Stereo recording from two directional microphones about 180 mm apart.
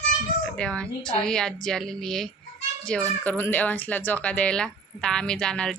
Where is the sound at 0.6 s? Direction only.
5° left (ahead or behind).